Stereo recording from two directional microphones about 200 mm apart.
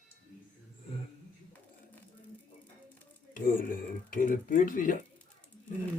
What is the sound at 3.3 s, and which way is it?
Speech, 45° left (ahead or behind).